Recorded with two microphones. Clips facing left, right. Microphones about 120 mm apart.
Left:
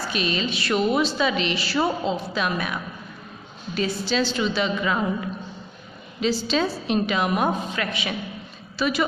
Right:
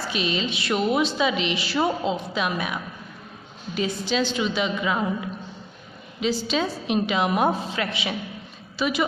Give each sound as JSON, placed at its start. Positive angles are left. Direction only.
{"t": 0.1, "sound": "a woman's voice", "side_deg": -20}
{"t": 6.2, "sound": "a woman's voice", "side_deg": -15}